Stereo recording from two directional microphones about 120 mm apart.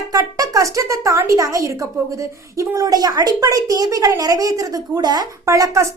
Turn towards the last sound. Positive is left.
turn(degrees=-25)  # may be behind; listen again after turning